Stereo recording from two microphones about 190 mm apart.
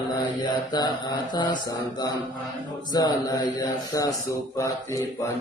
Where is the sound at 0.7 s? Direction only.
20° left (ahead or behind).